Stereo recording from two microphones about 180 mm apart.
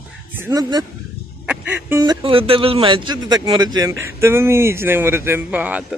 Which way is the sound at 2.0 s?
30° right (ahead or behind).